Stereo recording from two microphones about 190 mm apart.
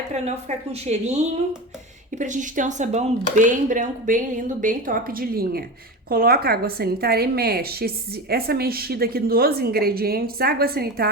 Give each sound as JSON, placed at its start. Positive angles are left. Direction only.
{"t": 0.1, "sound": "a woman's voice", "side_deg": -35}